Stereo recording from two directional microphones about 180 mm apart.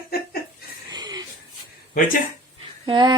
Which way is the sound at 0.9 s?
20° right (ahead or behind).